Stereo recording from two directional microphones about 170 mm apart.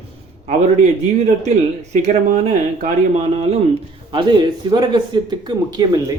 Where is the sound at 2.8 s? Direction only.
40° right (ahead or behind).